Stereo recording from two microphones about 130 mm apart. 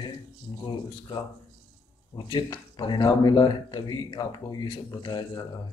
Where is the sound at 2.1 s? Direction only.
35° left (ahead or behind).